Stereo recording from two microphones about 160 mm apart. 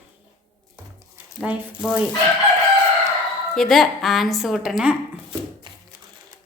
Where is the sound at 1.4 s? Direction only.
5° right (ahead or behind).